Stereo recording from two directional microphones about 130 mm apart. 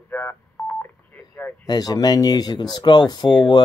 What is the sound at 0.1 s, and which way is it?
Telephone dialing, 15° left (ahead or behind).